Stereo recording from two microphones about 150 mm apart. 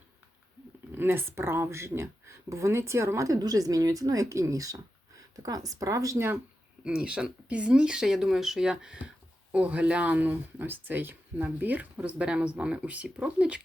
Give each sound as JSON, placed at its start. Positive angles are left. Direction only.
{"t": 0.9, "sound": "speech", "side_deg": -15}